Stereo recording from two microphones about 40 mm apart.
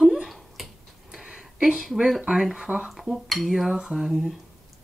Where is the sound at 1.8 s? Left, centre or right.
Centre.